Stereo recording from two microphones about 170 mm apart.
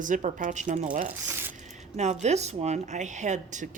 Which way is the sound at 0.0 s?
50° right (ahead or behind).